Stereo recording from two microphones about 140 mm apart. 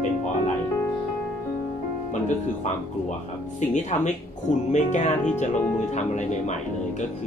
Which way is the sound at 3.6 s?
60° left (ahead or behind).